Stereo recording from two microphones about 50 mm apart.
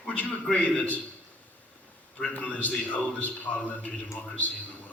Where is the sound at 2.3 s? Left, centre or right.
Left.